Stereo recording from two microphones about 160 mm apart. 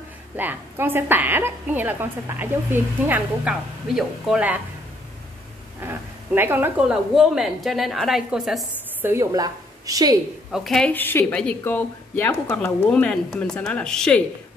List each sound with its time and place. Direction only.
0.4 s a woman's voice: 10° right (ahead or behind)
5.8 s speech: 15° right (ahead or behind)
7.2 s a woman's voice: centre (ahead or behind)
9.1 s a woman's voice: 20° right (ahead or behind)
10.5 s speech: centre (ahead or behind)